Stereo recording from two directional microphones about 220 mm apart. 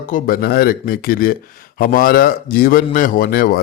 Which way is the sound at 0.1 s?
40° left (ahead or behind).